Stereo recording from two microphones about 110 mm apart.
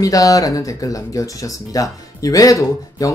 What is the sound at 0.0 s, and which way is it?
Speech, 30° left (ahead or behind).